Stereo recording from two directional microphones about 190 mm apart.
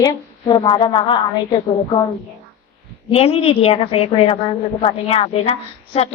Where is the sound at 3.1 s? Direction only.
30° left (ahead or behind).